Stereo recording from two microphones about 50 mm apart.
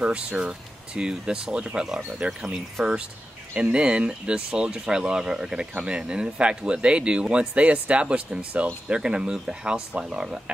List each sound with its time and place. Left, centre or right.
0.0 s speech: right